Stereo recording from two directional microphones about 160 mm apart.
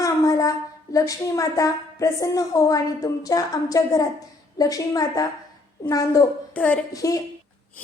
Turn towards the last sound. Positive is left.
turn(degrees=20)  # may be behind; listen again after turning